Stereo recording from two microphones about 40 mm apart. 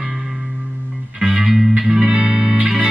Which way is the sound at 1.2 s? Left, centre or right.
Right.